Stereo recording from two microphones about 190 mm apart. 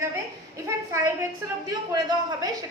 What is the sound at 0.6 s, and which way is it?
A woman's voice, 15° right (ahead or behind).